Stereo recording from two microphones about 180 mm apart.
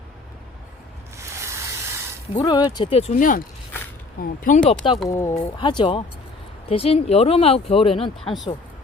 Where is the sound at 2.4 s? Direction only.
25° left (ahead or behind).